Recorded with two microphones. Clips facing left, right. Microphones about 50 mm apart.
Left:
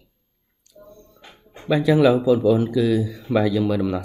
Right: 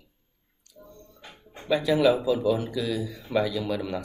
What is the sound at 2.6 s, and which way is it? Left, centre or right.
Speech, left.